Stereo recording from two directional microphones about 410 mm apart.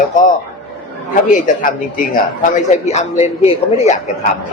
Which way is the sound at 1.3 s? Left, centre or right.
Centre.